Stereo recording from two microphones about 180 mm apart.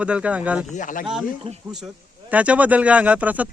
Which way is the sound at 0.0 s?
5° right (ahead or behind).